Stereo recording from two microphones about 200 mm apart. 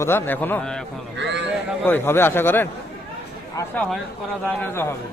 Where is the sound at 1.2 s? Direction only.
60° right (ahead or behind).